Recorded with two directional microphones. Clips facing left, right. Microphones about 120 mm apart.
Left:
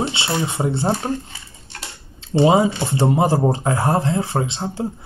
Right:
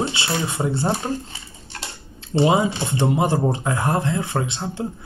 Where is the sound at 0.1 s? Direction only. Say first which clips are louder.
Left 2 dB; 25° left (ahead or behind).